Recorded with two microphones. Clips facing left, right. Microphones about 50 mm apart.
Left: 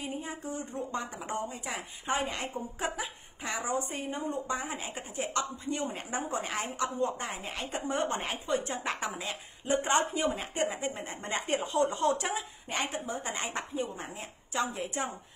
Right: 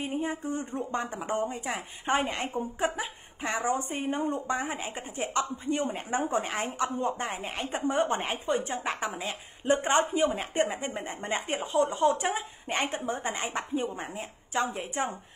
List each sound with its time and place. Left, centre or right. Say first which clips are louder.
0.0 s a woman's voice: right 6 dB; right
8.8 s speech: right 2 dB; centre
9.7 s a woman's voice: right 3 dB; right
10.1 s speech: right 5 dB; centre
11.4 s speech: right 1 dB; centre
12.1 s a woman's voice: right 2 dB; right
13.3 s speech: right 3 dB; centre
14.5 s speech: right 2 dB; right